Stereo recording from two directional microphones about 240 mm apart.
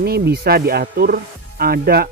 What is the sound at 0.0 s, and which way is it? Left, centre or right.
Speech, right.